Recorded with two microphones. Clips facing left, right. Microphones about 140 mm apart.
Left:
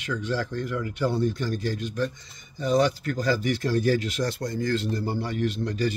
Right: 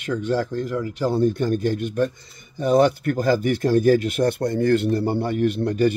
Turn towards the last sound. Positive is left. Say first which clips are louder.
# right 7 dB
turn(degrees=-55)  # may be behind; listen again after turning